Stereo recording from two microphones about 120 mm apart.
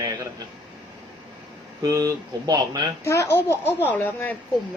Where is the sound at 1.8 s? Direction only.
30° right (ahead or behind).